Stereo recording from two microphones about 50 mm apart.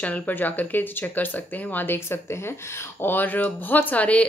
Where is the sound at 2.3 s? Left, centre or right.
Left.